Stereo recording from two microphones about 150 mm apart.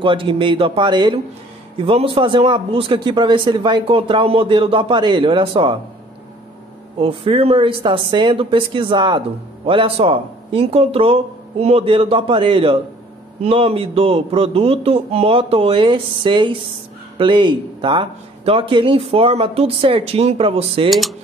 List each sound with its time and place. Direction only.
0.0 s a man's voice: 35° right (ahead or behind)
7.0 s a man's voice: 35° right (ahead or behind)
20.9 s speech: centre (ahead or behind)